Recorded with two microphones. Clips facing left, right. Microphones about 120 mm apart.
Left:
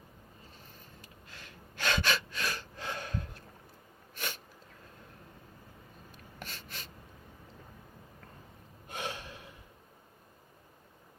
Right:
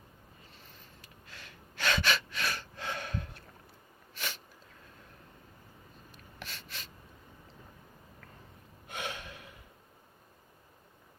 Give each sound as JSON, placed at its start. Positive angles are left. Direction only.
{"t": 1.0, "sound": "gasp", "side_deg": 45}
{"t": 4.1, "sound": "sneeze", "side_deg": 50}
{"t": 6.1, "sound": "a sound", "side_deg": 50}
{"t": 8.9, "sound": "gasp", "side_deg": 35}